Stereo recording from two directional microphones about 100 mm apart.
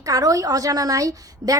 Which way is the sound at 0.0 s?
35° right (ahead or behind).